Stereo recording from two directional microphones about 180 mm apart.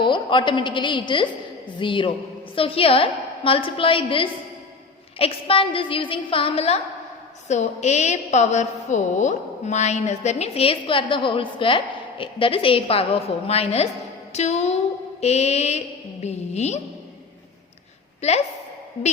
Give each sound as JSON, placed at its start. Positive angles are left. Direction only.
{"t": 0.0, "sound": "a woman's voice", "side_deg": 25}
{"t": 18.2, "sound": "a woman's voice", "side_deg": 35}